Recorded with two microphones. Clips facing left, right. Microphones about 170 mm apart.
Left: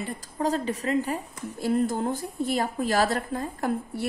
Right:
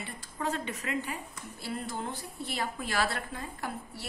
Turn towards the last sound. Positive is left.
turn(degrees=45)  # may be behind; listen again after turning